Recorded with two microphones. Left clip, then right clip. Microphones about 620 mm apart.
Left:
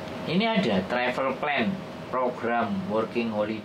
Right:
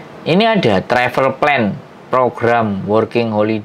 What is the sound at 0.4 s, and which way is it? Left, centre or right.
Speech, right.